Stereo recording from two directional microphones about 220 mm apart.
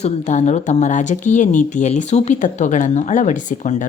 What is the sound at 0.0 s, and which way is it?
Speech, 30° left (ahead or behind).